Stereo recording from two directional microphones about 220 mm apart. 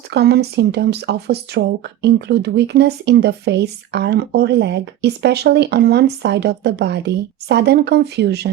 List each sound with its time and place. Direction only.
0.1 s speech: 50° right (ahead or behind)